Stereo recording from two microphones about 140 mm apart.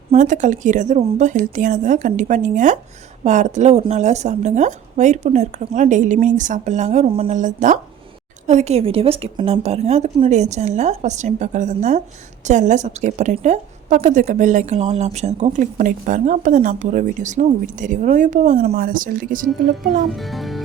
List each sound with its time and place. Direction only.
0.1 s a woman's voice: 60° right (ahead or behind); by 7.3 s 45° right (ahead or behind)
7.3 s a woman's voice: 60° right (ahead or behind); by 19.5 s 75° right (ahead or behind)
19.8 s speech: 90° right
20.1 s speech: centre (ahead or behind)